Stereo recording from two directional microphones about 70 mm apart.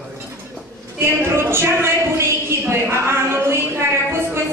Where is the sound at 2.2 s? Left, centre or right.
Right.